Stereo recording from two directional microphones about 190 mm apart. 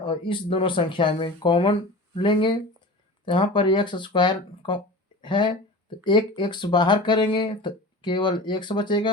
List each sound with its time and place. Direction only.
0.0 s speech: 25° left (ahead or behind)